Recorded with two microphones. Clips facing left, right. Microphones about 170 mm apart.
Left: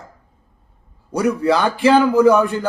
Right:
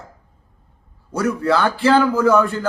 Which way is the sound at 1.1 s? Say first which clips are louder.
Left 2 dB; 15° left (ahead or behind).